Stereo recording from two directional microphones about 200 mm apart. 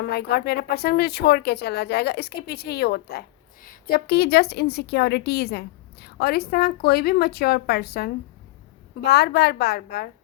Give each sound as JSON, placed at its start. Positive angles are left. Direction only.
{"t": 0.1, "sound": "speech", "side_deg": 55}